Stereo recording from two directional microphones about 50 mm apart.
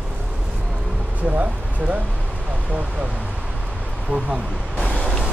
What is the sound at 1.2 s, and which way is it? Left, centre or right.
Speech, right.